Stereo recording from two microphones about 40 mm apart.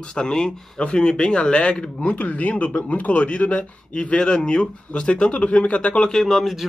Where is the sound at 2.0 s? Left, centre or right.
Left.